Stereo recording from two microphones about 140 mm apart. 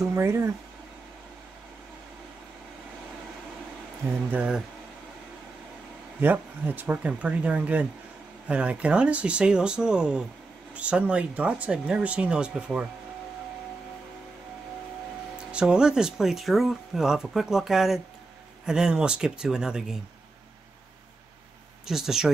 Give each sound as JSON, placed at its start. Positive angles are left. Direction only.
{"t": 0.0, "sound": "speech", "side_deg": -20}
{"t": 4.3, "sound": "speech", "side_deg": -5}
{"t": 6.2, "sound": "speech", "side_deg": -15}
{"t": 15.5, "sound": "speech", "side_deg": -5}
{"t": 21.8, "sound": "speech", "side_deg": -5}